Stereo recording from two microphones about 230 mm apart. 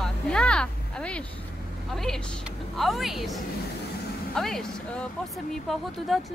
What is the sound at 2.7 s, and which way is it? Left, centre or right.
Speech, centre.